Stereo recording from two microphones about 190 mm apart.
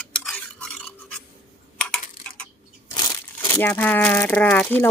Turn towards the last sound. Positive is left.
turn(degrees=10)  # may be behind; listen again after turning